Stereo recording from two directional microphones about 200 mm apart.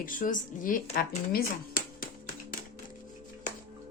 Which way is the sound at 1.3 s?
50° left (ahead or behind).